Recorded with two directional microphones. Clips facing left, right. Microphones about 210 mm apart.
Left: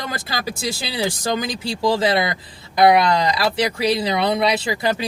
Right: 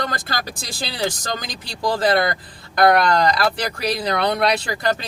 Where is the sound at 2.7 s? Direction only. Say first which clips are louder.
Left 1 dB; 5° left (ahead or behind).